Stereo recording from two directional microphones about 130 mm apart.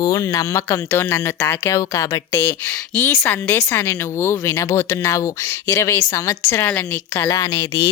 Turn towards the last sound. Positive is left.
turn(degrees=25)  # may be behind; listen again after turning